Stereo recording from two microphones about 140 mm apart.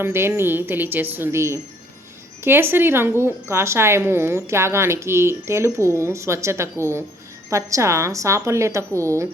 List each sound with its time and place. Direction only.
0.0 s a woman's voice: 15° right (ahead or behind)